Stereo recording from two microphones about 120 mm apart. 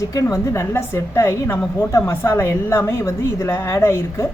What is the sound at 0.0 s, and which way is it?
A woman's voice, 30° left (ahead or behind).